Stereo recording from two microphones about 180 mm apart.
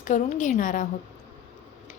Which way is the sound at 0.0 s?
45° left (ahead or behind).